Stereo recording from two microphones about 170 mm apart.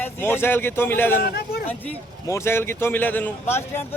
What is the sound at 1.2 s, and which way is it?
Speech, 70° left (ahead or behind).